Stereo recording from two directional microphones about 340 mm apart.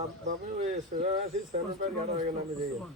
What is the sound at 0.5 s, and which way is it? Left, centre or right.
A man's voice, centre.